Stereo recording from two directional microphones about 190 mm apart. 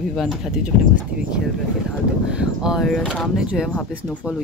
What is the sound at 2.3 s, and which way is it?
Speech, 5° right (ahead or behind).